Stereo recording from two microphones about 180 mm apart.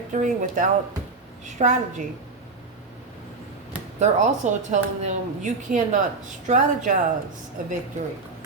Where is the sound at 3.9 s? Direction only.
40° right (ahead or behind).